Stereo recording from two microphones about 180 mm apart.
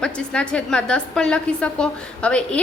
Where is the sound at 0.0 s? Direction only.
5° left (ahead or behind).